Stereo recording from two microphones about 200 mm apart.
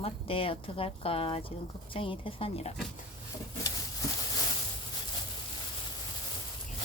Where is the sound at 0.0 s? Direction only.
30° left (ahead or behind).